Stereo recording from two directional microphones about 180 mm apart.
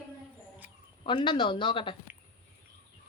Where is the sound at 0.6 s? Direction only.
10° right (ahead or behind).